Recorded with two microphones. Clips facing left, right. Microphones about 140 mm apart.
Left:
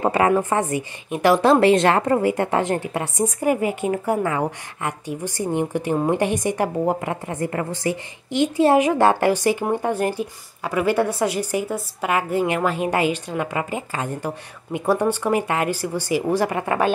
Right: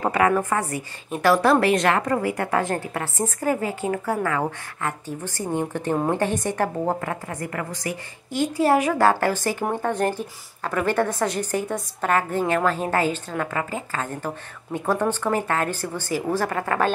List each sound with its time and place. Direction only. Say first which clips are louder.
0.0 s a woman's voice: left 2 dB; 25° left (ahead or behind)